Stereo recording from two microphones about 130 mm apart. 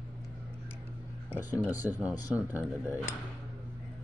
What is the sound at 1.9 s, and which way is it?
Speech, 10° right (ahead or behind).